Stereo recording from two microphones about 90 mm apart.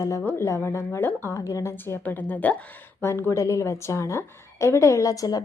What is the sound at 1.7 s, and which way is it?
Speech, 20° left (ahead or behind).